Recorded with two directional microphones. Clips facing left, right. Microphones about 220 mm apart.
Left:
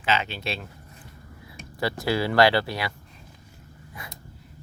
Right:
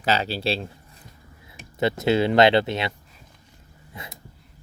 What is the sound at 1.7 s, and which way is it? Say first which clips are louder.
Speech: right 5 dB; 20° right (ahead or behind).